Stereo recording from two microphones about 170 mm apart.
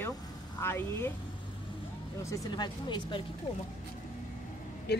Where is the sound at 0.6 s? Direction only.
15° left (ahead or behind).